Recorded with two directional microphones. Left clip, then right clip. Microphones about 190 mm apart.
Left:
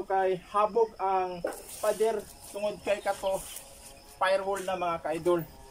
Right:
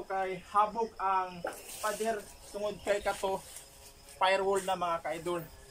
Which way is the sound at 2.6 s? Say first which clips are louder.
Left 2 dB; 5° left (ahead or behind).